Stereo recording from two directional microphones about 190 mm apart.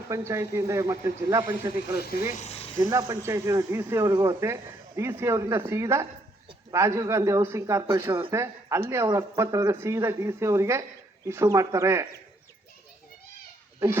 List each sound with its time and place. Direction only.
0.1 s speech: 15° right (ahead or behind)
2.4 s a sound: 35° left (ahead or behind)
3.0 s speech: 15° right (ahead or behind)
13.7 s speech: 15° right (ahead or behind)